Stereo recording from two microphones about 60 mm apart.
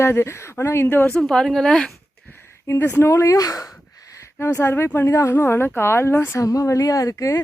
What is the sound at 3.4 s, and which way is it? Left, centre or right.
Speech, left.